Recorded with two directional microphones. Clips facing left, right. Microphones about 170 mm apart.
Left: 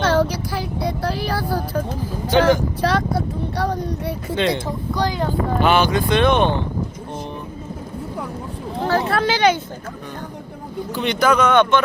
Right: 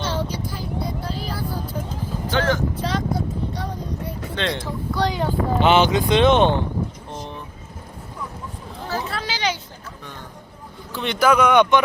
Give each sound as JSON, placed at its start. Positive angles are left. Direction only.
{"t": 0.0, "sound": "a sound", "side_deg": 85}
{"t": 2.8, "sound": "speech", "side_deg": 65}
{"t": 4.4, "sound": "speech", "side_deg": 10}
{"t": 5.5, "sound": "speech", "side_deg": -20}
{"t": 8.8, "sound": "a sound", "side_deg": 70}
{"t": 10.9, "sound": "speech", "side_deg": 0}